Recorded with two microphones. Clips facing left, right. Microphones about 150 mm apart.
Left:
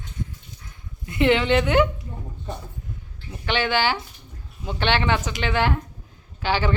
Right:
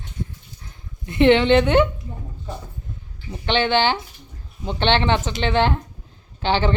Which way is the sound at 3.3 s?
25° right (ahead or behind).